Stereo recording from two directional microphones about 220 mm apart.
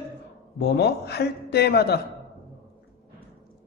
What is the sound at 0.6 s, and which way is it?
Speech, 50° left (ahead or behind).